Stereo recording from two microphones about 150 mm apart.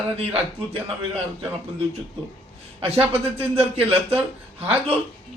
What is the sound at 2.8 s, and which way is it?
Speech, 40° right (ahead or behind).